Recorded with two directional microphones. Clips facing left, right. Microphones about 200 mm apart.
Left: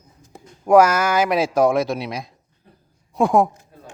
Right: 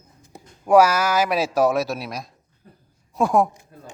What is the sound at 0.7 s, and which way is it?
Speech, 10° right (ahead or behind).